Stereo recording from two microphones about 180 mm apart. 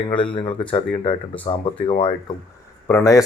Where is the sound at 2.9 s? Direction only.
15° left (ahead or behind).